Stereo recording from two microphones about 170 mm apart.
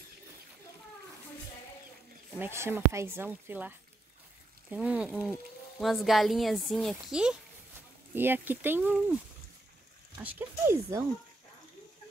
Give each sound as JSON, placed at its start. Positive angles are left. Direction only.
{"t": 2.3, "sound": "speech", "side_deg": -15}
{"t": 10.1, "sound": "speech", "side_deg": -15}